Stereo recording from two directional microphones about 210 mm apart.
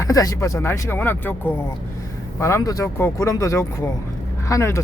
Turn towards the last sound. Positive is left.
turn(degrees=15)  # may be behind; listen again after turning